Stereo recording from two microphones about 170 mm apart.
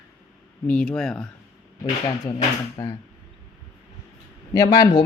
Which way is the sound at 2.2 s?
25° left (ahead or behind).